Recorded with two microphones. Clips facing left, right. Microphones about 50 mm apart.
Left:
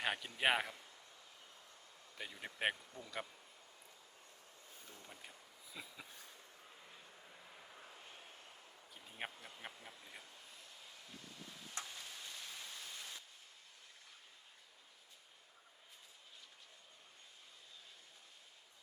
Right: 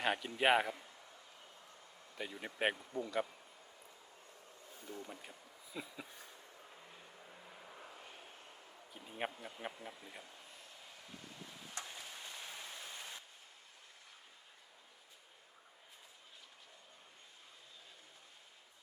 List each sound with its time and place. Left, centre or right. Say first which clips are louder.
0.0 s speech: right 3 dB; centre
2.1 s speech: right 4 dB; centre
2.7 s speech: right 11 dB; right
4.9 s speech: right 9 dB; centre
7.8 s vehicle: right 3 dB; right
8.9 s speech: right 6 dB; centre
11.8 s rain: right 1 dB; centre